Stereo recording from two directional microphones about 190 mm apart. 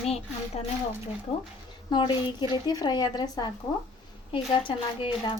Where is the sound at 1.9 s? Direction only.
25° left (ahead or behind).